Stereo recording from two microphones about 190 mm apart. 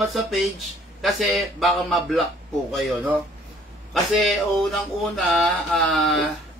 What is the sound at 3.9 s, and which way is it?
Speech, centre (ahead or behind).